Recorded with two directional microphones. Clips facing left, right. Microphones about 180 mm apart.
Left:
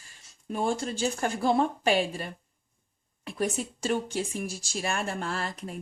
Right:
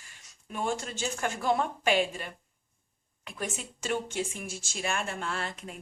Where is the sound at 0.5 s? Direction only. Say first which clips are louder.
Left 4 dB; 35° left (ahead or behind).